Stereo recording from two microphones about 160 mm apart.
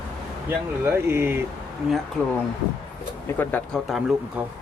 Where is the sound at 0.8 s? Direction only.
15° right (ahead or behind).